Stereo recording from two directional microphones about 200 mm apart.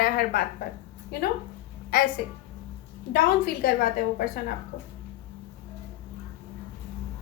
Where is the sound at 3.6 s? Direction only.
50° left (ahead or behind).